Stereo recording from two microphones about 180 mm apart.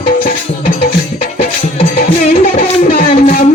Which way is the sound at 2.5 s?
50° left (ahead or behind).